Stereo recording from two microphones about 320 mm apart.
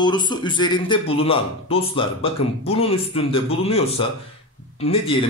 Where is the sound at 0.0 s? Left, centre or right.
Centre.